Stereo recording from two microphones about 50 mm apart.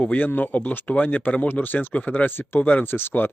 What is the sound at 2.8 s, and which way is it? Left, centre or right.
Speech, left.